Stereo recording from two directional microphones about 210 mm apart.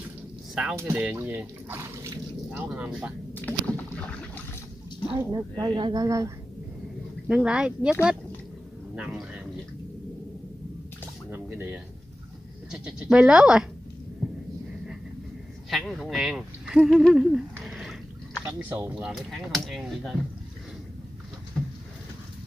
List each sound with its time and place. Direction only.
0.6 s speech: 10° right (ahead or behind)
3.3 s rowboat: 5° left (ahead or behind)
5.1 s speech: 15° right (ahead or behind)
7.2 s speech: 5° right (ahead or behind)
11.2 s a sound: 10° right (ahead or behind)
12.7 s speech: 5° right (ahead or behind)
15.7 s speech: centre (ahead or behind)